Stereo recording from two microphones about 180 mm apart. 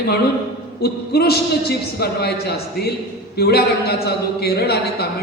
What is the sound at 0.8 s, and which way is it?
Speech, 60° left (ahead or behind).